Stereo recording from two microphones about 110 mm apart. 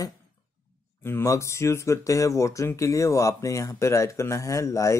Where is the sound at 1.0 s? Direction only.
25° left (ahead or behind).